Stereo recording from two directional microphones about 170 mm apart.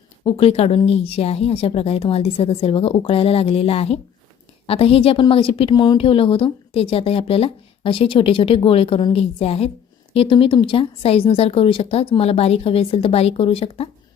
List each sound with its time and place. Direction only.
0.3 s a woman's voice: 35° left (ahead or behind)